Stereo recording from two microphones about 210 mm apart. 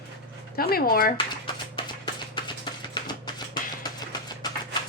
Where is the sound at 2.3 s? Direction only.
20° left (ahead or behind).